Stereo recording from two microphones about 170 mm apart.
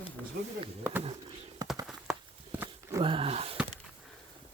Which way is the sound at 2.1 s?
5° right (ahead or behind).